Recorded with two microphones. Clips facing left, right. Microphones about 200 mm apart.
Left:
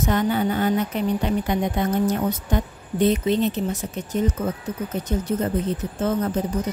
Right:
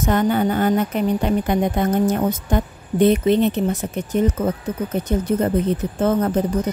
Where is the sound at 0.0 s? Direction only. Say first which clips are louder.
Right 3 dB; 50° right (ahead or behind).